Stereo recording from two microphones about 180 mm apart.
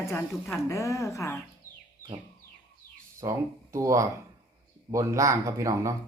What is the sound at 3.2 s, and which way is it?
Speech, 20° right (ahead or behind).